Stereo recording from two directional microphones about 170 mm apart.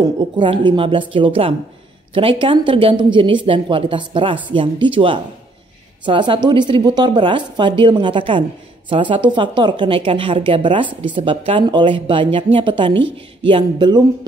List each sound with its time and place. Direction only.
0.4 s speech: 30° right (ahead or behind)